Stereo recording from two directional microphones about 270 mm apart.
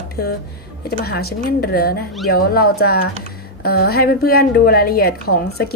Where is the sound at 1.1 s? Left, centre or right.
Left.